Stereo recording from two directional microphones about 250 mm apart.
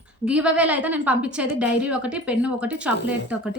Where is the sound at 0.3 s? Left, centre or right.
Centre.